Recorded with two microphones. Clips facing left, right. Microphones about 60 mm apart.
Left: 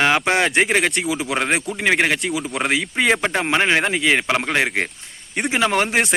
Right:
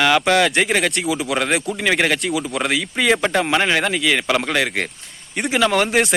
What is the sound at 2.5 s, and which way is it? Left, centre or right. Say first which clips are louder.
Speech: even; left.